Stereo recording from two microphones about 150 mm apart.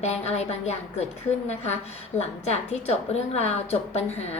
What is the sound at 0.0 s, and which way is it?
A woman's voice, 45° left (ahead or behind).